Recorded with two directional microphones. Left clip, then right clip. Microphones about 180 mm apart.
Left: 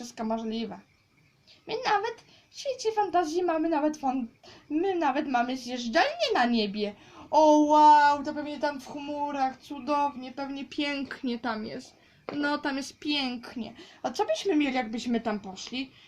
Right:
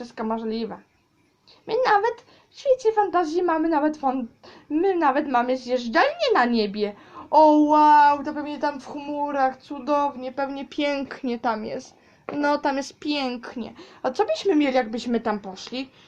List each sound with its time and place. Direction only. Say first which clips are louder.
0.0 s a woman's voice: right 4 dB; 20° left (ahead or behind)